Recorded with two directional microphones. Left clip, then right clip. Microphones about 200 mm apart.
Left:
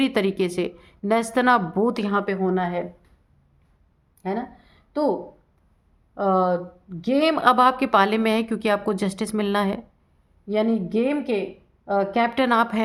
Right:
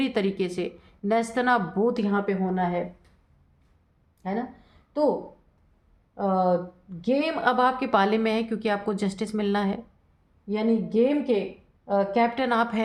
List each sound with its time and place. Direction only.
0.0 s a woman's voice: 35° left (ahead or behind); by 2.8 s 50° left (ahead or behind)
4.2 s speech: 55° left (ahead or behind)
6.1 s a woman's voice: 50° left (ahead or behind); by 9.8 s 35° left (ahead or behind)
10.5 s speech: 50° left (ahead or behind); by 12.8 s 35° left (ahead or behind)